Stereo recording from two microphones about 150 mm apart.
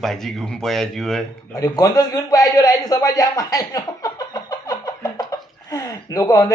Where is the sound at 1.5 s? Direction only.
20° left (ahead or behind).